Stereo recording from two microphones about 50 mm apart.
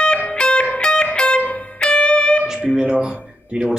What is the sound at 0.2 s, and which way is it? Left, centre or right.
Music, left.